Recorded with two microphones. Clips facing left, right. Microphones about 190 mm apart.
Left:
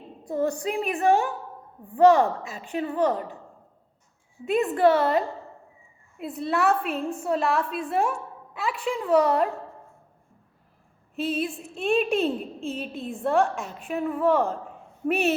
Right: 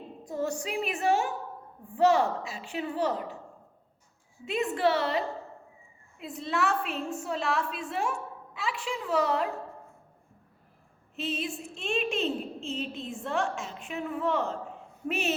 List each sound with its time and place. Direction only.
0.3 s a woman's voice: 55° left (ahead or behind)
4.4 s a woman's voice: 55° left (ahead or behind)
11.1 s a woman's voice: 55° left (ahead or behind)